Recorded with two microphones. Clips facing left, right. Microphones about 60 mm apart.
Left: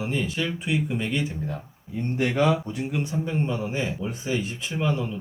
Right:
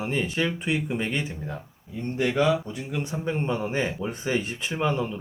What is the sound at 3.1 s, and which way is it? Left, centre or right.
Speech, right.